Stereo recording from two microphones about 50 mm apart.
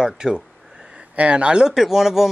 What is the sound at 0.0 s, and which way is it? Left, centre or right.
Speech, centre.